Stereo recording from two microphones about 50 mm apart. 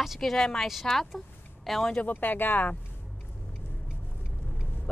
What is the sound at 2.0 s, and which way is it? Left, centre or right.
Speech, left.